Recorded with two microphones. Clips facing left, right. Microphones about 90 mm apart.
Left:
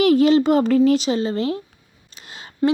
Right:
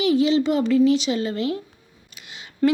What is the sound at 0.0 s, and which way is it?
Speech, 50° left (ahead or behind).